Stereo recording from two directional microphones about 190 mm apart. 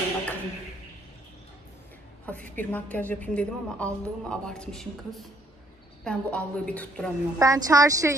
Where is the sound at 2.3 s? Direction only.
5° left (ahead or behind).